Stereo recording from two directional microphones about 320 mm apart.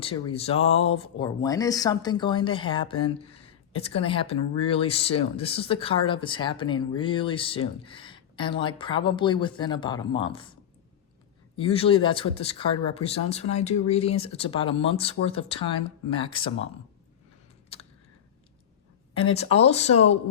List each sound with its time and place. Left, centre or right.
0.0 s speech: centre
11.5 s speech: centre
19.1 s speech: centre